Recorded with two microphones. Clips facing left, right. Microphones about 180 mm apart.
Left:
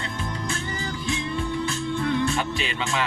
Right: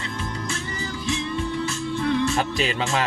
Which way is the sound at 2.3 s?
40° right (ahead or behind).